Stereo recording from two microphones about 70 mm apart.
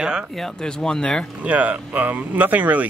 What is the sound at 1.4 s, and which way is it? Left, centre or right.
Speech, right.